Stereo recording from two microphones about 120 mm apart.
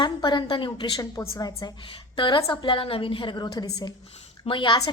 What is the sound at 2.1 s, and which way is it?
A woman's voice, 40° left (ahead or behind).